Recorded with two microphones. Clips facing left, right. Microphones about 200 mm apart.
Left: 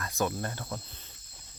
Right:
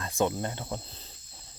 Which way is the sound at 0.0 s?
25° right (ahead or behind).